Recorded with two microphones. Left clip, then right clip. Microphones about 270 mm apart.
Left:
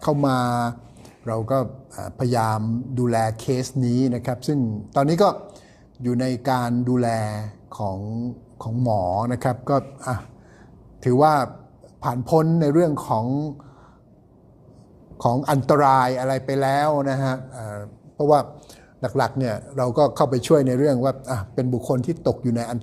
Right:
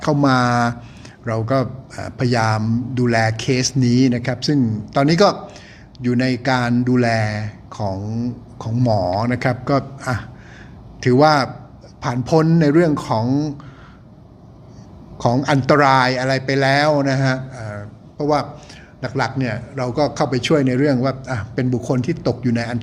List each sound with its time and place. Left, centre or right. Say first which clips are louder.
0.0 s a man's voice: right 5 dB; centre
15.4 s a man's voice: right 3 dB; centre
18.9 s speech: even; left